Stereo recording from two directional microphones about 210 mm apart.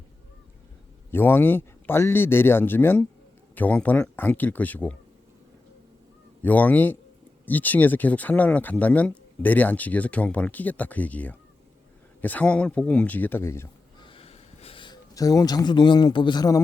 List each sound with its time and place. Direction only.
1.1 s speech: 10° left (ahead or behind)
6.4 s speech: 10° left (ahead or behind)
14.1 s a sound: 25° left (ahead or behind)